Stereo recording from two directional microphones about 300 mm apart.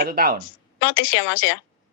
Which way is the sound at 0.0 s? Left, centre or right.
Right.